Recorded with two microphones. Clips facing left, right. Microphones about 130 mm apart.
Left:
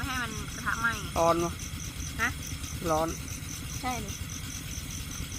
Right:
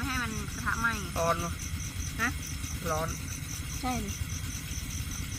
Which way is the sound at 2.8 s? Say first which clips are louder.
Left 5 dB; 25° left (ahead or behind).